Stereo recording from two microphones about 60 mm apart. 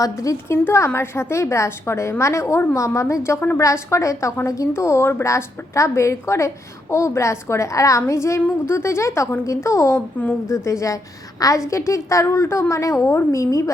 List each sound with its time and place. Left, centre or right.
0.0 s a woman's voice: left
0.4 s a woman's voice: left
4.7 s a woman's voice: left
11.3 s a woman's voice: left
13.1 s a woman's voice: left
13.4 s a woman's voice: left